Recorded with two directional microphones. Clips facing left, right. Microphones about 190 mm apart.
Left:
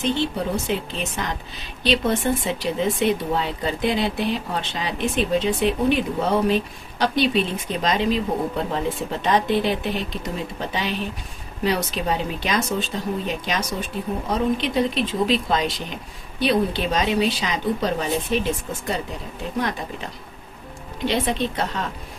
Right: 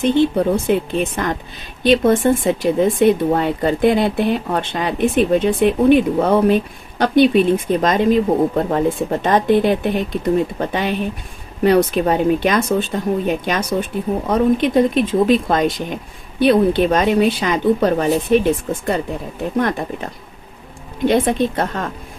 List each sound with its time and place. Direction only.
0.0 s speech: 55° right (ahead or behind)